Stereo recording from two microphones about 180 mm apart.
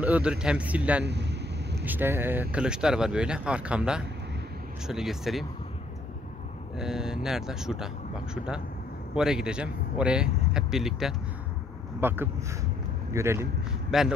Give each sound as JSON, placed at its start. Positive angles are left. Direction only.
{"t": 0.0, "sound": "speech", "side_deg": -5}
{"t": 1.0, "sound": "a sound", "side_deg": -70}
{"t": 1.9, "sound": "speech", "side_deg": -10}
{"t": 6.8, "sound": "speech", "side_deg": -5}
{"t": 9.1, "sound": "speech", "side_deg": -5}
{"t": 13.8, "sound": "speech", "side_deg": 0}